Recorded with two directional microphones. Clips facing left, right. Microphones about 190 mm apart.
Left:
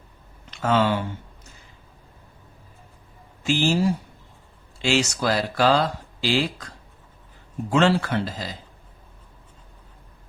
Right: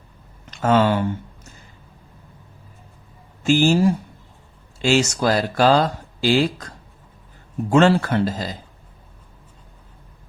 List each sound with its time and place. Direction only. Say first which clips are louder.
0.5 s speech: right 4 dB; 45° right (ahead or behind)
3.4 s speech: right 5 dB; 45° right (ahead or behind)
7.7 s speech: right 4 dB; 45° right (ahead or behind)